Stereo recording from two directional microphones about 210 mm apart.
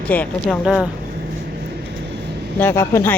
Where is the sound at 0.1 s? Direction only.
10° left (ahead or behind).